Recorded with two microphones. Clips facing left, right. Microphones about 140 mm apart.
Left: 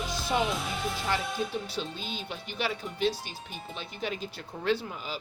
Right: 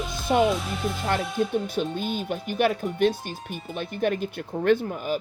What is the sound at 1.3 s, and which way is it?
Speech, 50° right (ahead or behind).